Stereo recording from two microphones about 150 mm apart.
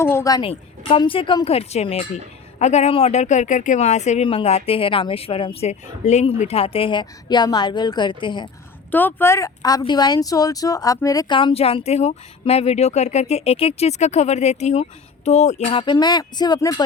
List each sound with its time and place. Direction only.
0.0 s a woman's voice: 15° left (ahead or behind)
0.4 s speech: 35° left (ahead or behind)
8.9 s speech: 15° left (ahead or behind)
11.3 s speech: 40° left (ahead or behind)
15.7 s speech: 35° left (ahead or behind)